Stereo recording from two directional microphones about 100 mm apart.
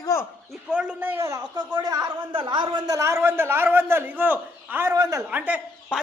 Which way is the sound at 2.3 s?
50° right (ahead or behind).